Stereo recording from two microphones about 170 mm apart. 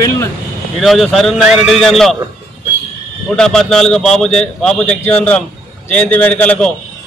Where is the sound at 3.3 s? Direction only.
5° left (ahead or behind).